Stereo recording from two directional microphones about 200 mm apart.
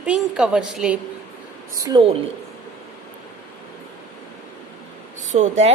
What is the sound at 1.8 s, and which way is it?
Speech, 25° right (ahead or behind).